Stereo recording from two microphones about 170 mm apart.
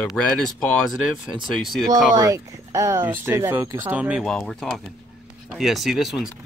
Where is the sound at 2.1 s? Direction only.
20° right (ahead or behind).